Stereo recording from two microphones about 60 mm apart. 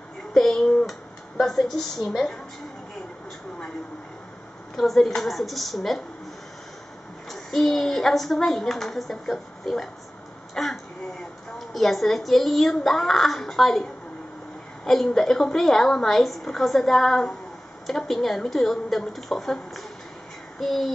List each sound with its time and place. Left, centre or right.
0.3 s a woman's voice: centre
4.7 s a woman's voice: centre
7.2 s a woman's voice: centre
14.9 s a woman's voice: centre
20.5 s a sound: centre